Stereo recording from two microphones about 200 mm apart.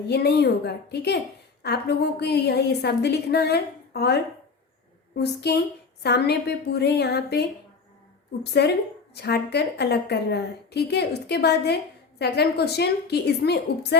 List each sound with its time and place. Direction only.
0.1 s a woman's voice: 55° left (ahead or behind)
8.6 s a woman's voice: 60° left (ahead or behind)